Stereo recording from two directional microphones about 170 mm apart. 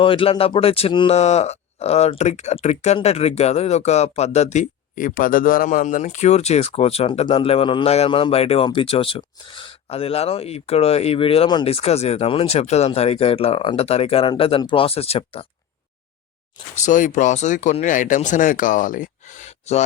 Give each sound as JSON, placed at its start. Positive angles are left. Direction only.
{"t": 0.0, "sound": "speech", "side_deg": 30}
{"t": 16.7, "sound": "speech", "side_deg": 45}